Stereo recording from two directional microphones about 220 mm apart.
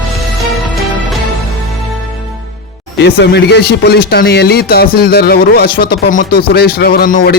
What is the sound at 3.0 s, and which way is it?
Speech, 50° left (ahead or behind).